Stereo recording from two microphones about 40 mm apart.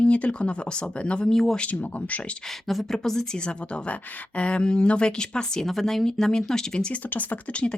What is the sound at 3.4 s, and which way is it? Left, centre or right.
Speech, left.